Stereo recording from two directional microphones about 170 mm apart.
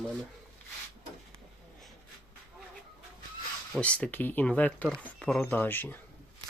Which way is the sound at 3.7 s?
5° left (ahead or behind).